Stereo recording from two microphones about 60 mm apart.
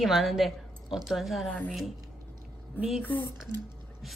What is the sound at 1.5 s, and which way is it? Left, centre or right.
Speech, left.